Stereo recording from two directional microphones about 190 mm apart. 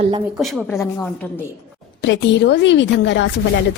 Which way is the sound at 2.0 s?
70° left (ahead or behind).